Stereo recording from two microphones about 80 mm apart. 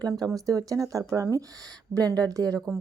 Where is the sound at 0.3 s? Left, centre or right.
Right.